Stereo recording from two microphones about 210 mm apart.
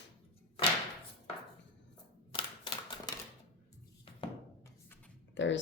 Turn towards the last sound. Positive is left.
turn(degrees=60)  # may be behind; listen again after turning